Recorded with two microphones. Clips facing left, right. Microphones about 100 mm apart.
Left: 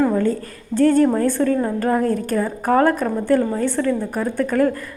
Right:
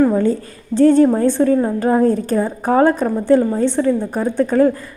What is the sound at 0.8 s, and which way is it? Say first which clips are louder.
A woman's voice: right 4 dB; 25° right (ahead or behind).